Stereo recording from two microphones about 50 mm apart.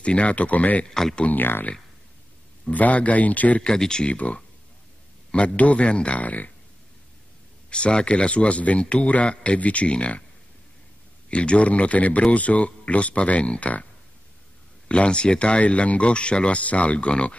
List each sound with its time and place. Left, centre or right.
0.0 s speech: left
0.8 s speech: centre
1.3 s speech: left
2.7 s speech: left
3.6 s speech: centre
4.1 s speech: left
5.6 s speech: left
7.7 s speech: centre
11.2 s speech: left
14.9 s speech: left